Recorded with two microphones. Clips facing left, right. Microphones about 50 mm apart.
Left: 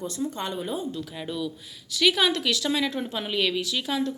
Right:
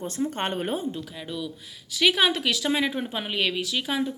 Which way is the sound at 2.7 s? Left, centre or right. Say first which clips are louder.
Right 1 dB; right.